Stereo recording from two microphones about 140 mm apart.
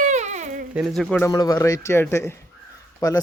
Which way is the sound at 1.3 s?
25° left (ahead or behind).